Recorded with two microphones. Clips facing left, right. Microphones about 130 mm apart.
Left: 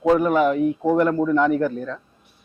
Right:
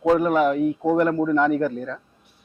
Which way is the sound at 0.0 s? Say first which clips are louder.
Left 1 dB; 20° left (ahead or behind).